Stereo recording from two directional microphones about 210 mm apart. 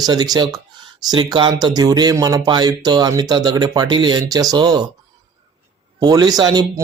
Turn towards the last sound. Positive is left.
turn(degrees=-20)  # may be behind; listen again after turning